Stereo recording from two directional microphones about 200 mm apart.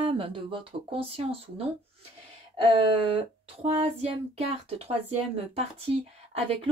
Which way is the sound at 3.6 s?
30° right (ahead or behind).